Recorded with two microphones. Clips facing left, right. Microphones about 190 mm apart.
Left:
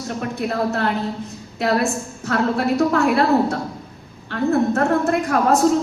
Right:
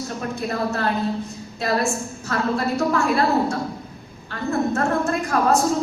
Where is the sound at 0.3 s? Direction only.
65° left (ahead or behind).